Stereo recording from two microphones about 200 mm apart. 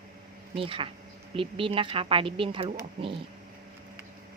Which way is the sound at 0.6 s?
25° right (ahead or behind).